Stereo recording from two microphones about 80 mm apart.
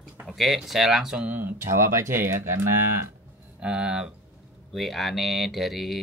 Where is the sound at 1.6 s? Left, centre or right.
Right.